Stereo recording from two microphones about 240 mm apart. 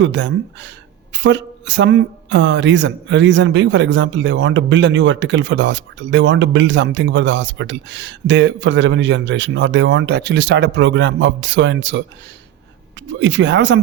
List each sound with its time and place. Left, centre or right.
0.0 s speech: right
13.1 s speech: right